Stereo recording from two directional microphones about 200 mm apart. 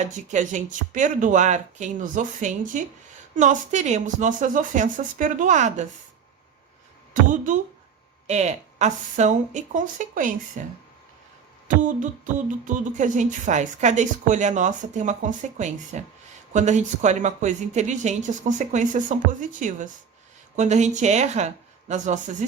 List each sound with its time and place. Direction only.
0.0 s speech: 40° right (ahead or behind)
7.1 s speech: 40° right (ahead or behind)